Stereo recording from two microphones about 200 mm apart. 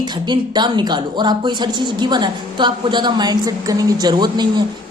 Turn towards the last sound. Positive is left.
turn(degrees=-20)  # may be behind; listen again after turning